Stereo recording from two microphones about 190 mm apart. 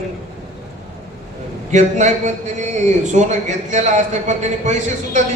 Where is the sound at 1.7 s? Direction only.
40° right (ahead or behind).